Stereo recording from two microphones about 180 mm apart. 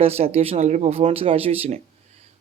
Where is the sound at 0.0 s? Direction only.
35° right (ahead or behind).